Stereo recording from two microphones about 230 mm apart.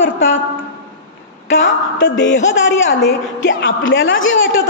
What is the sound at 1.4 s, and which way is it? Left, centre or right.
A woman's voice, left.